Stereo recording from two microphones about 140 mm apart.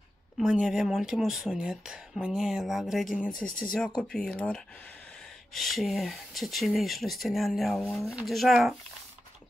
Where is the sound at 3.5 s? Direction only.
90° left.